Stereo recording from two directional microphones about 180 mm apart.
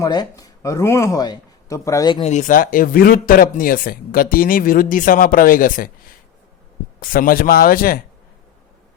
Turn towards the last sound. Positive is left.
turn(degrees=55)  # may be behind; listen again after turning